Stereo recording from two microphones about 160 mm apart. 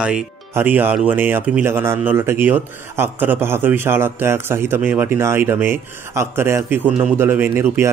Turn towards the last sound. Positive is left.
turn(degrees=-15)  # may be behind; listen again after turning